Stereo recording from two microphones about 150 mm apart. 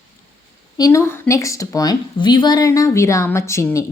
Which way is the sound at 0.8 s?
20° left (ahead or behind).